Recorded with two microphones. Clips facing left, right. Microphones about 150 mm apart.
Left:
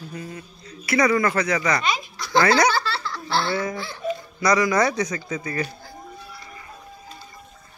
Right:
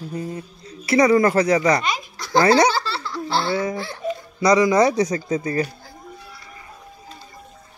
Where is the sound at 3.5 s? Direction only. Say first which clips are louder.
Right 3 dB; 20° right (ahead or behind).